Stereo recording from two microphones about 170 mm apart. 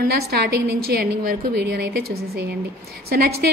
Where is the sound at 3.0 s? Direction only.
65° right (ahead or behind).